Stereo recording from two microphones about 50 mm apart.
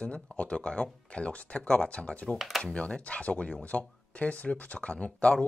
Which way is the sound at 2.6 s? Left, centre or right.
Left.